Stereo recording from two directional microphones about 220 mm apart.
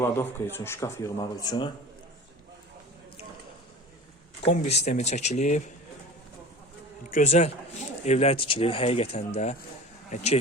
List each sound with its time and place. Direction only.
0.0 s speech: 10° left (ahead or behind)
4.4 s speech: 30° left (ahead or behind)
7.1 s speech: 35° left (ahead or behind)